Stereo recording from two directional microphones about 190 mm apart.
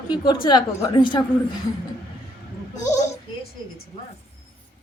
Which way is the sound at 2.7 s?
40° left (ahead or behind).